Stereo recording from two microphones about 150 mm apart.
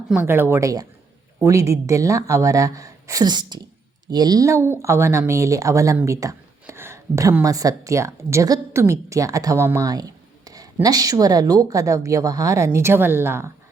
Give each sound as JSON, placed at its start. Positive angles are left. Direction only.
{"t": 0.1, "sound": "speech", "side_deg": -15}